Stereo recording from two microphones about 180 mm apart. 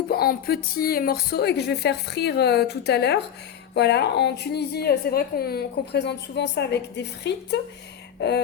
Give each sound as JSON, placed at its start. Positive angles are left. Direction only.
{"t": 0.1, "sound": "a woman's voice", "side_deg": 60}